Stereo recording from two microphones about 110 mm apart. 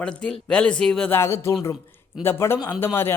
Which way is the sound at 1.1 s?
25° left (ahead or behind).